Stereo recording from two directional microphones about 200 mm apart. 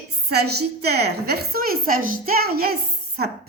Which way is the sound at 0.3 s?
55° right (ahead or behind).